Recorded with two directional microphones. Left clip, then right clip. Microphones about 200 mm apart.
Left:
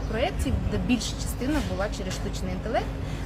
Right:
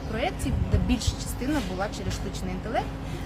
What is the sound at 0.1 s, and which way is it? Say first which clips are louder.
A woman's voice: left 1 dB; 10° left (ahead or behind).